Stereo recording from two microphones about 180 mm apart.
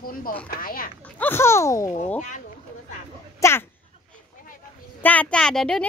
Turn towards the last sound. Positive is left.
turn(degrees=5)  # may be behind; listen again after turning